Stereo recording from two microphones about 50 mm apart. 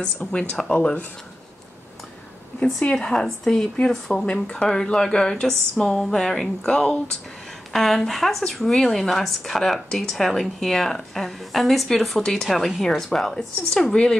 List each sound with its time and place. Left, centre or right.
0.0 s speech: left
2.8 s speech: centre
4.3 s speech: left; by 12.2 s centre
12.2 s speech: centre
12.4 s speech: centre